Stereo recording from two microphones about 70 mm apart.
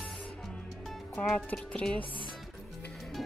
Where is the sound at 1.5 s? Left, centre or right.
Centre.